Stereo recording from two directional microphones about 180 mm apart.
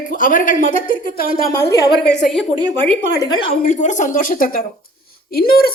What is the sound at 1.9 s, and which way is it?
Speech, 65° left (ahead or behind).